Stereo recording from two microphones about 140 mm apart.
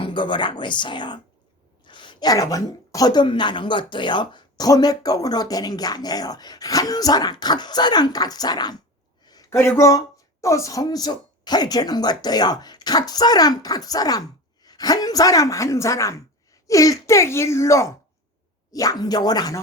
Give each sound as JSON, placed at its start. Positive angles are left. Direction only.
{"t": 0.0, "sound": "speech", "side_deg": 35}
{"t": 9.2, "sound": "a sound", "side_deg": 30}
{"t": 9.6, "sound": "speech", "side_deg": 20}